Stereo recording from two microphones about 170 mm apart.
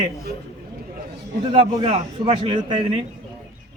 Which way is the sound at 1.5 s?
30° right (ahead or behind).